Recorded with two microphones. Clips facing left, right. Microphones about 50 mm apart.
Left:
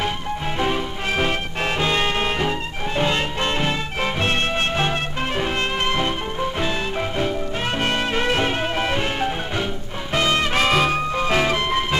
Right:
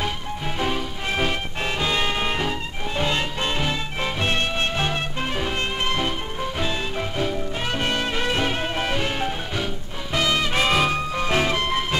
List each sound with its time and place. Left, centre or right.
0.6 s music: centre
7.8 s music: left
10.1 s music: left
10.6 s music: centre
10.9 s music: left